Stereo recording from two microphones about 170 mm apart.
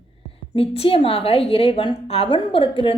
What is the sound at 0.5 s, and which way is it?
A woman's voice, 35° left (ahead or behind).